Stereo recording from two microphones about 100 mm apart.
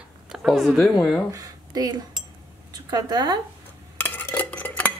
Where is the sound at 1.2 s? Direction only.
40° right (ahead or behind).